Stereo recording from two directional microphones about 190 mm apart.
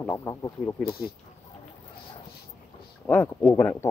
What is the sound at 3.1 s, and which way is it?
Speech, 10° left (ahead or behind).